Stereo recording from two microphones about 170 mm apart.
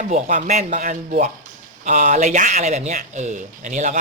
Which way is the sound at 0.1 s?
45° right (ahead or behind).